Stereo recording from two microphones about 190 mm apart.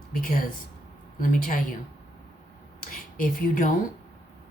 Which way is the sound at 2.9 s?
45° left (ahead or behind).